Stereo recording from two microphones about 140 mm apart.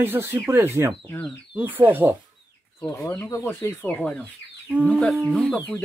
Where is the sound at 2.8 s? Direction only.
20° left (ahead or behind).